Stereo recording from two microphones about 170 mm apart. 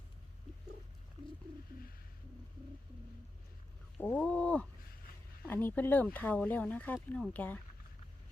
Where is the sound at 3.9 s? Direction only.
5° left (ahead or behind).